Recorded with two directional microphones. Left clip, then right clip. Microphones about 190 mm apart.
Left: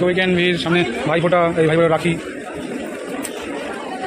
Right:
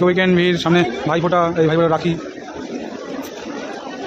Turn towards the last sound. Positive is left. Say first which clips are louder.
# left 1 dB
turn(degrees=-15)  # may be behind; listen again after turning